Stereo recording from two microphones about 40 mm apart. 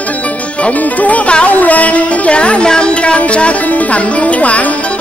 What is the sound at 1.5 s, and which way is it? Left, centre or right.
Music, left.